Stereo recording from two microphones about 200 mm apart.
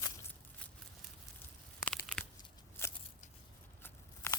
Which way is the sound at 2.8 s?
10° left (ahead or behind).